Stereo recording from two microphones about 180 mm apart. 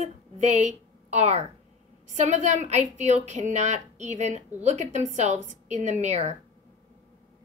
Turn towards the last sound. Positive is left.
turn(degrees=-40)  # may be behind; listen again after turning